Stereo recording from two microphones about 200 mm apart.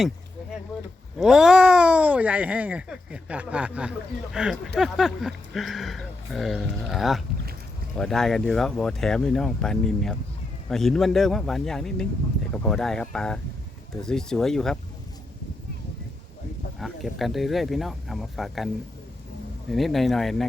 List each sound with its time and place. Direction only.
1.2 s speech: 5° right (ahead or behind)
16.8 s speech: centre (ahead or behind)
19.7 s speech: centre (ahead or behind)